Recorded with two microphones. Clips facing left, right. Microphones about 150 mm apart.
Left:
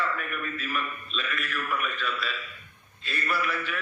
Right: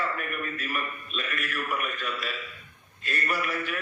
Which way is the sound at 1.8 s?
45° right (ahead or behind).